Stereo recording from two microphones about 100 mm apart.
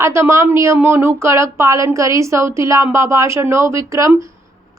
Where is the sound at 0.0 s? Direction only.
25° right (ahead or behind).